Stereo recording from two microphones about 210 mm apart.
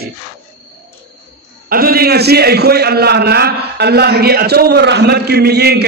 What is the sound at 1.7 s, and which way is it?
A man's voice, 45° right (ahead or behind).